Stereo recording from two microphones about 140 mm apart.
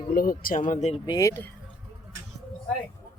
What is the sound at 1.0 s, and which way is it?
Speech, 30° left (ahead or behind).